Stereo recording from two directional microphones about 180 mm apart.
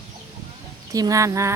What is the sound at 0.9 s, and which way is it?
Speech, 20° right (ahead or behind).